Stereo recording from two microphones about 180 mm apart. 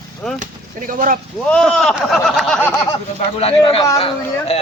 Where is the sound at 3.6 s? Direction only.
30° left (ahead or behind).